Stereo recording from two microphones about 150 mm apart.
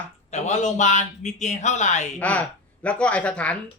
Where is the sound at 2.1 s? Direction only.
10° left (ahead or behind).